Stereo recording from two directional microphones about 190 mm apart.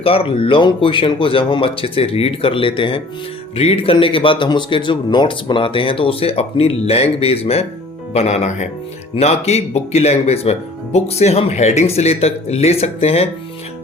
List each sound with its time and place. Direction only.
0.0 s speech: 30° left (ahead or behind)